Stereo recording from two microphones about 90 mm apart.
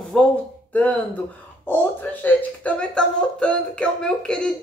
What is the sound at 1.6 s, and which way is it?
Speech, 20° left (ahead or behind).